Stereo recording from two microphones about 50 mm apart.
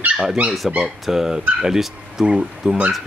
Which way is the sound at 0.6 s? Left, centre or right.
Centre.